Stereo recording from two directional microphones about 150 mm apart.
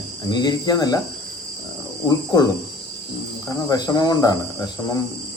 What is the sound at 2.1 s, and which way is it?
Speech, 25° left (ahead or behind).